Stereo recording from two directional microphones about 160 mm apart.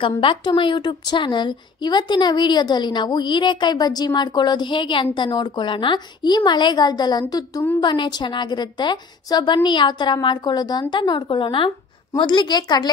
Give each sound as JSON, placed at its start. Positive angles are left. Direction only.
{"t": 0.0, "sound": "a woman's voice", "side_deg": 30}